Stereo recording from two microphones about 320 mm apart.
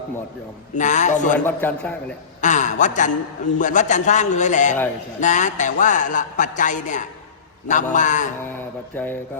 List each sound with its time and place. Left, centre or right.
0.8 s a man's voice: left
1.5 s a man's voice: centre
2.4 s a man's voice: left
8.9 s a man's voice: centre